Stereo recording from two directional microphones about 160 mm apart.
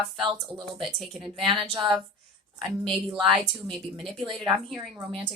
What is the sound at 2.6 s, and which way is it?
Speech, 30° right (ahead or behind).